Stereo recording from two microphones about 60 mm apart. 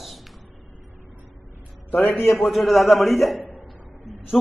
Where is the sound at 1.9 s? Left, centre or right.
Left.